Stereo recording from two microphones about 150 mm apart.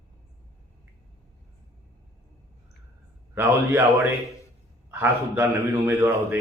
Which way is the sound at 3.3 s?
15° right (ahead or behind).